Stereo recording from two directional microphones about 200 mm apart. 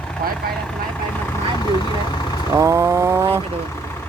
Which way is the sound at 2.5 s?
15° right (ahead or behind).